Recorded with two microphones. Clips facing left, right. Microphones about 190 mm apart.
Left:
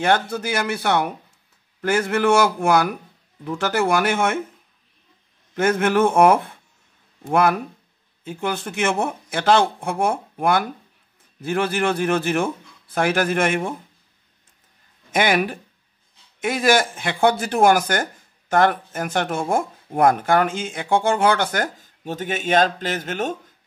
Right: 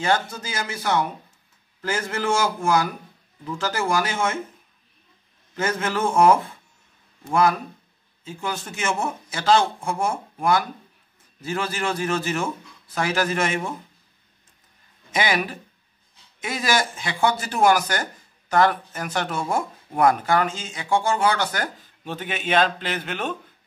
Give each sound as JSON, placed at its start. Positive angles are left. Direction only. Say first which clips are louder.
{"t": 0.0, "sound": "a man's voice", "louder": "left 4 dB", "side_deg": 60}
{"t": 5.6, "sound": "a man's voice", "louder": "left 7 dB", "side_deg": 60}
{"t": 15.0, "sound": "speech", "louder": "left 4 dB", "side_deg": 55}